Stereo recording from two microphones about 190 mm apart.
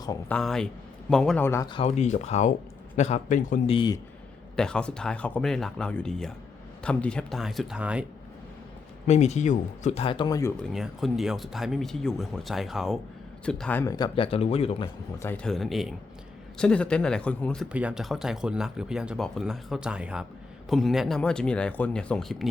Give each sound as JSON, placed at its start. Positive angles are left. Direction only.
{"t": 0.3, "sound": "a man's voice", "side_deg": 5}
{"t": 1.7, "sound": "speech", "side_deg": 35}
{"t": 3.8, "sound": "speech", "side_deg": 20}
{"t": 4.5, "sound": "speech", "side_deg": 5}
{"t": 9.0, "sound": "speech", "side_deg": 35}
{"t": 10.6, "sound": "speech", "side_deg": 0}
{"t": 15.2, "sound": "speech", "side_deg": 10}
{"t": 17.7, "sound": "speech", "side_deg": -5}